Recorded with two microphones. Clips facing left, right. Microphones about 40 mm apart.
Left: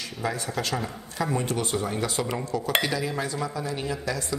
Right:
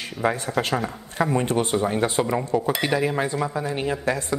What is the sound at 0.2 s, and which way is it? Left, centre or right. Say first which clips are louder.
A woman's voice: right 6 dB; right.